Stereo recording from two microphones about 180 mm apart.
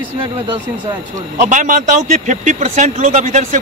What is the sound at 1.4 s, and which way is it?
Speech, 45° right (ahead or behind).